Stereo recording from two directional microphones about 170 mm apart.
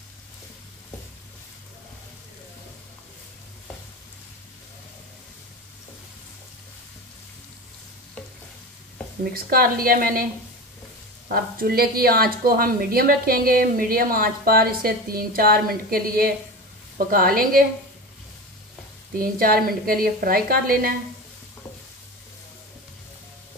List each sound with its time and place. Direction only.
9.2 s speech: 60° right (ahead or behind)
11.2 s speech: 60° right (ahead or behind)
19.1 s speech: 55° right (ahead or behind)